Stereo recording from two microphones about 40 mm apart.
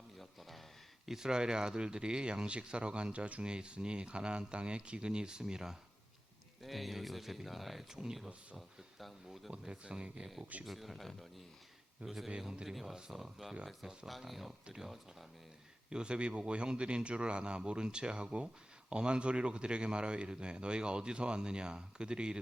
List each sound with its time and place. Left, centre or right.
0.2 s a sound: centre
1.0 s speech: centre
1.3 s speech: centre
6.6 s speech: centre
9.5 s speech: right
10.7 s speech: centre
14.1 s speech: centre
15.9 s speech: right